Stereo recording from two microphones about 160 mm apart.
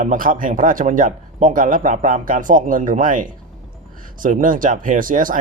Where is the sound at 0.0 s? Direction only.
55° right (ahead or behind).